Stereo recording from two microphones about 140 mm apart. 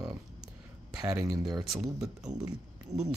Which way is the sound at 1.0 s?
5° right (ahead or behind).